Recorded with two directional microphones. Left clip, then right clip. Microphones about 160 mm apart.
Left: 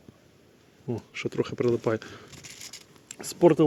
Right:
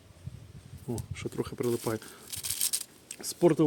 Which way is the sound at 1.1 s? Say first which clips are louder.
Left 7 dB; 10° left (ahead or behind).